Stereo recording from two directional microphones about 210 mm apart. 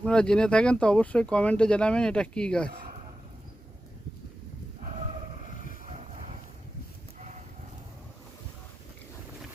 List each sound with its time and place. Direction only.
0.0 s speech: 5° left (ahead or behind)